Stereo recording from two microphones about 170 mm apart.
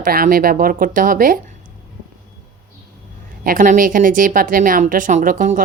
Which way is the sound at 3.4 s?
55° right (ahead or behind).